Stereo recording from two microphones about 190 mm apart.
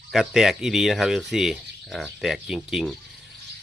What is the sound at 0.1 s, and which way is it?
Speech, centre (ahead or behind).